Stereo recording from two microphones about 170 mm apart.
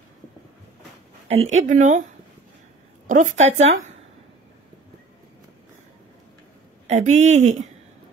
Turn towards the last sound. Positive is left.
turn(degrees=-45)  # may be behind; listen again after turning